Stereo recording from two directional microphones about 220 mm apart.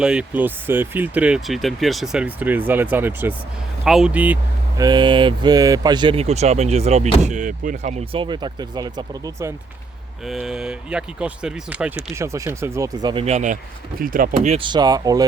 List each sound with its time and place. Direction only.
0.0 s speech: 5° right (ahead or behind)
4.8 s speech: 20° right (ahead or behind)
10.2 s speech: centre (ahead or behind)